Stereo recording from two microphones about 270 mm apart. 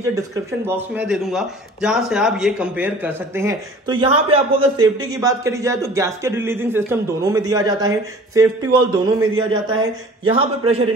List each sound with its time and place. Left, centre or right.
0.0 s a man's voice: centre